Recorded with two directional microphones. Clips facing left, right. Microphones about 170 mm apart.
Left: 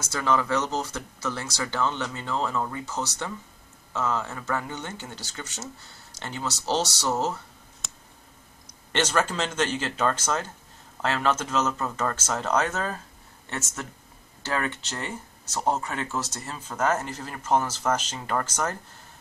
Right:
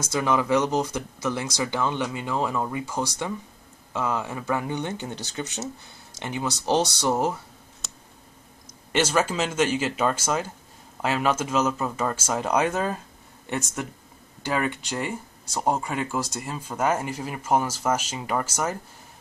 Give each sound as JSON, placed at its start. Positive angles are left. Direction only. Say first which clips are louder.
{"t": 0.0, "sound": "speech", "louder": "right 2 dB", "side_deg": -10}
{"t": 8.9, "sound": "speech", "louder": "right 2 dB", "side_deg": -10}